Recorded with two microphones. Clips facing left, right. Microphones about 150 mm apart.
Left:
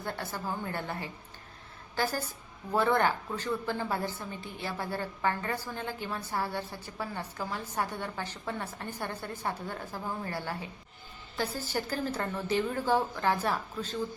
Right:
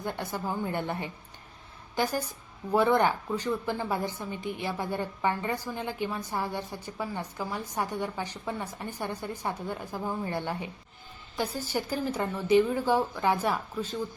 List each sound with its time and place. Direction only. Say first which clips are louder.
0.0 s a woman's voice: right 3 dB; 15° right (ahead or behind)